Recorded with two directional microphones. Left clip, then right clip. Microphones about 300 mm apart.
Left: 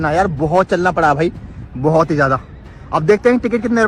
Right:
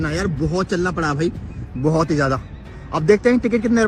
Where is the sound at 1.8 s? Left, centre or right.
Left.